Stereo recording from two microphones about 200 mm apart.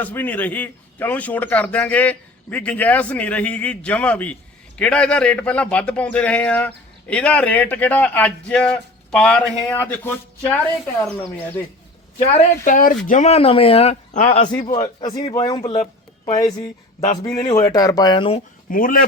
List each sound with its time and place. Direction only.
0.0 s speech: 10° left (ahead or behind)
12.2 s a woman's voice: 35° left (ahead or behind)
14.5 s speech: 20° left (ahead or behind)
15.7 s a sound: 35° left (ahead or behind)
16.3 s speech: 20° left (ahead or behind)
18.7 s speech: 45° left (ahead or behind)